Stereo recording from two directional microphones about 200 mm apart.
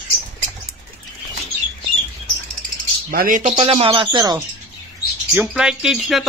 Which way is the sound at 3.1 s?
45° right (ahead or behind).